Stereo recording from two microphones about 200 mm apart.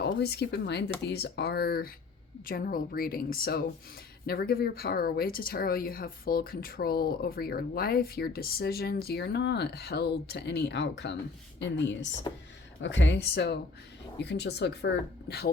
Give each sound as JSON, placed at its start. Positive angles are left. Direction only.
{"t": 0.0, "sound": "speech", "side_deg": 55}